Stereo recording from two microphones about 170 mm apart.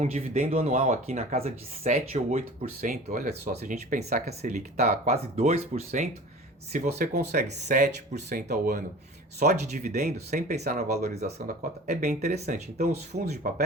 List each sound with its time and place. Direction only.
0.0 s speech: 40° right (ahead or behind)